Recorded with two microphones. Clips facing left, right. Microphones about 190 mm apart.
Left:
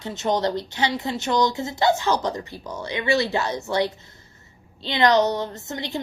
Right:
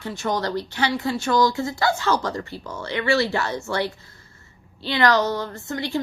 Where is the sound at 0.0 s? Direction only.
20° left (ahead or behind).